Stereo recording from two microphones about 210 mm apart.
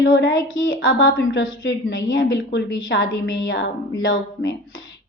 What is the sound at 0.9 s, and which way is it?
A woman's voice, 65° left (ahead or behind).